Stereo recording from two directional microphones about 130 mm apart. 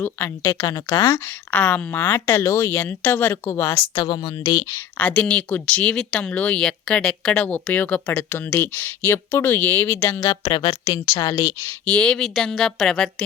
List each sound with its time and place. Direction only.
0.0 s speech: 20° left (ahead or behind)
1.5 s speech: 15° left (ahead or behind); by 4.8 s 30° left (ahead or behind)
4.9 s speech: 10° left (ahead or behind); by 11.7 s 25° left (ahead or behind)
11.9 s speech: 10° left (ahead or behind)